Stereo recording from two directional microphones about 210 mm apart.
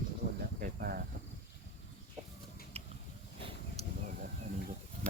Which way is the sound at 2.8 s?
30° right (ahead or behind).